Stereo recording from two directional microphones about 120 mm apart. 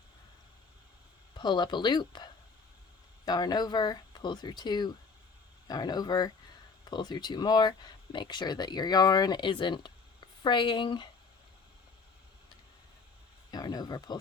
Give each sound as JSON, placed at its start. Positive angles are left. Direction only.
{"t": 1.3, "sound": "speech", "side_deg": 35}
{"t": 13.5, "sound": "speech", "side_deg": 35}